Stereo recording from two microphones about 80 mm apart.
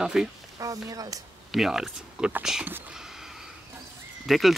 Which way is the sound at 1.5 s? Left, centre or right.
Centre.